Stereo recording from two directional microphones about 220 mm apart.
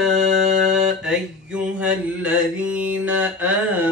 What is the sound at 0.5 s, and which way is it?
Mantra, 5° right (ahead or behind).